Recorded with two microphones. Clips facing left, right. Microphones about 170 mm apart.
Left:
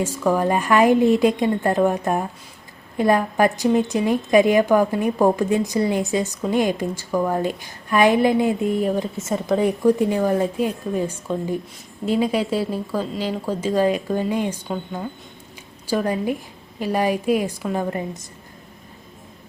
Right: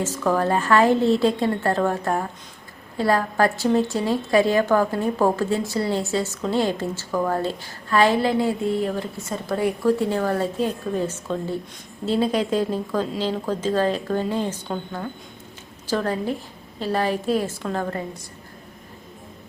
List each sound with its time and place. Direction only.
0.0 s a woman's voice: 10° left (ahead or behind)